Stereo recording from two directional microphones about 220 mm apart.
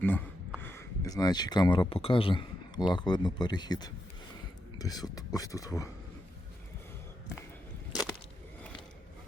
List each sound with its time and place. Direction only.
0.0 s speech: 10° left (ahead or behind)